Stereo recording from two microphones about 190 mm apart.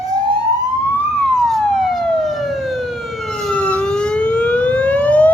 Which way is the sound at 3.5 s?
5° left (ahead or behind).